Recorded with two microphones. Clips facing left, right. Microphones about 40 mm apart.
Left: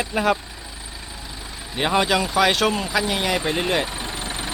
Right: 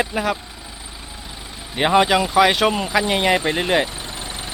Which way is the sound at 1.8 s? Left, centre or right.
Centre.